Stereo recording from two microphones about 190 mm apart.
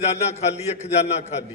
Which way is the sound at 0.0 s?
35° left (ahead or behind).